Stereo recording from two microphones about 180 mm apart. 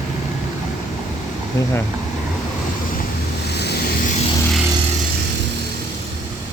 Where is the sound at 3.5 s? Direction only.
65° left (ahead or behind).